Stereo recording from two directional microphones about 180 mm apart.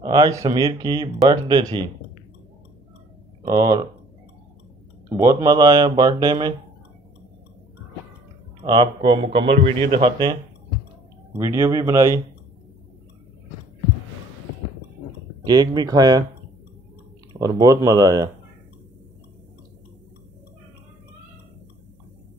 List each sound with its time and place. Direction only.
0.0 s speech: 20° right (ahead or behind)
3.4 s speech: 25° right (ahead or behind)
5.1 s speech: 20° right (ahead or behind)
8.6 s speech: 30° right (ahead or behind)
11.3 s speech: 15° right (ahead or behind)
15.4 s speech: 20° right (ahead or behind)
17.3 s speech: 20° right (ahead or behind)